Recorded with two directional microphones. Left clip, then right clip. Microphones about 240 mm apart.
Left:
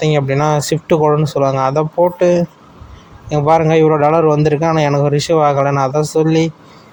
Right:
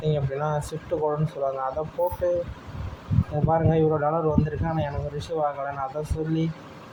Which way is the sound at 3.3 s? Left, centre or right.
Left.